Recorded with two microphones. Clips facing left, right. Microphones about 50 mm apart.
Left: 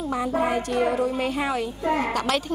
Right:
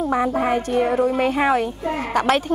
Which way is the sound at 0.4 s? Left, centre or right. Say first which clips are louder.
Right 3 dB; right.